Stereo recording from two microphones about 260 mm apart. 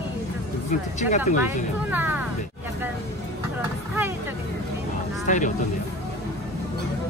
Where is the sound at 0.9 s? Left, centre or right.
Left.